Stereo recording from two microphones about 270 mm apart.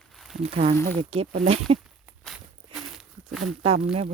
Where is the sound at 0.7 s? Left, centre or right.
Centre.